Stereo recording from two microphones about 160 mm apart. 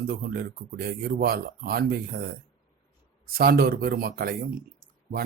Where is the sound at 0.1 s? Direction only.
75° right (ahead or behind).